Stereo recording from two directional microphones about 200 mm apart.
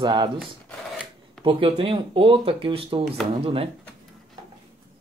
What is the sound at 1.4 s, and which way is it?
Speech, 25° right (ahead or behind).